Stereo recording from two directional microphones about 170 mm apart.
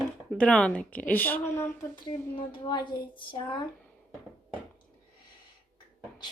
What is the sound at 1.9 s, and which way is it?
Speech, 30° left (ahead or behind).